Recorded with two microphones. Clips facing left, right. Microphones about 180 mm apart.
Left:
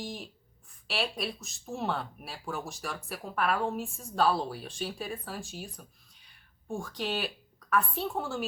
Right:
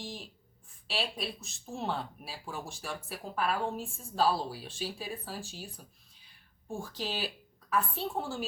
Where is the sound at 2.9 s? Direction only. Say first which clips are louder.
Left 1 dB; 30° right (ahead or behind).